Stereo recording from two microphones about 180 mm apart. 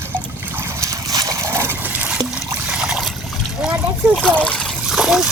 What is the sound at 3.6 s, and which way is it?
Splash, 5° right (ahead or behind).